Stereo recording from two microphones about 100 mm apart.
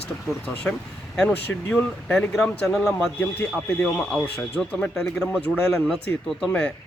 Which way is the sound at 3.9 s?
5° left (ahead or behind).